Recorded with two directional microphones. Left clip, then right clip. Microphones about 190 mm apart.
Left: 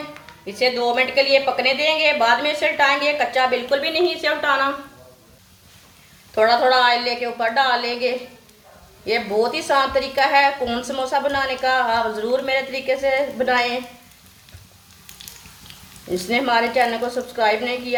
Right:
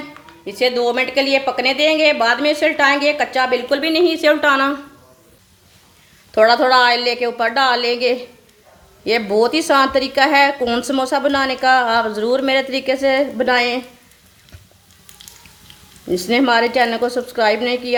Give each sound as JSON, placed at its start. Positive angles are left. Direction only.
{"t": 0.4, "sound": "a woman's voice", "side_deg": -55}
{"t": 6.3, "sound": "a woman's voice", "side_deg": -55}
{"t": 16.1, "sound": "a woman's voice", "side_deg": -55}